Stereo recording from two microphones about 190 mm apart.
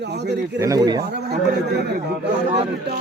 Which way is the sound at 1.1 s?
60° right (ahead or behind).